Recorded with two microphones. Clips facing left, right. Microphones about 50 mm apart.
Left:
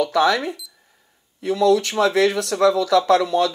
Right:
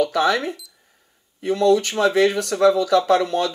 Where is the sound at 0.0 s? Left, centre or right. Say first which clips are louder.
Left 1 dB; centre.